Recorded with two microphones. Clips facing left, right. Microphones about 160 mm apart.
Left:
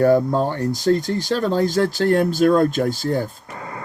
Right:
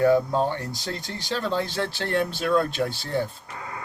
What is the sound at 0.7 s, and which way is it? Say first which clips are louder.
Speech: left 14 dB; 45° left (ahead or behind).